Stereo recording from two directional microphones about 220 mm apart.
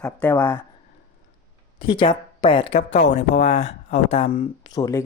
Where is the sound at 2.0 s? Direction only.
25° left (ahead or behind).